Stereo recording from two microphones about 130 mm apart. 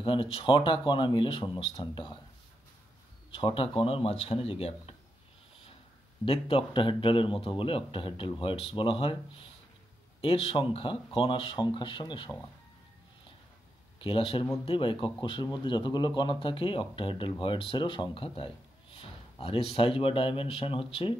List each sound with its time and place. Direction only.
0.0 s a man's voice: 40° left (ahead or behind)
3.3 s speech: 45° left (ahead or behind)
6.2 s a man's voice: 45° left (ahead or behind)
13.9 s a man's voice: 45° left (ahead or behind)